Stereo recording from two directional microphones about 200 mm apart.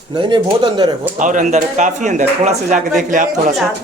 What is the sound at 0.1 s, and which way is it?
Speech, 25° right (ahead or behind).